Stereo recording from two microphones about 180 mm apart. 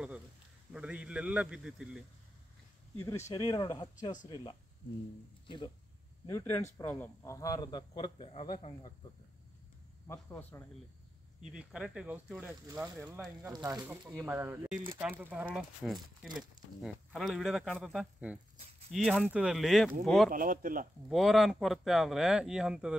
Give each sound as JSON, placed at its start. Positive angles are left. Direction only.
{"t": 0.7, "sound": "speech", "side_deg": -5}
{"t": 3.0, "sound": "a man's voice", "side_deg": 15}
{"t": 6.2, "sound": "a man's voice", "side_deg": 15}
{"t": 10.1, "sound": "speech", "side_deg": 10}
{"t": 11.4, "sound": "speech", "side_deg": -5}
{"t": 12.9, "sound": "speech", "side_deg": -5}
{"t": 13.5, "sound": "speech", "side_deg": -20}
{"t": 13.8, "sound": "speech", "side_deg": -10}
{"t": 18.6, "sound": "speech", "side_deg": -35}
{"t": 19.0, "sound": "speech", "side_deg": -5}
{"t": 20.2, "sound": "speech", "side_deg": -50}
{"t": 21.1, "sound": "speech", "side_deg": 0}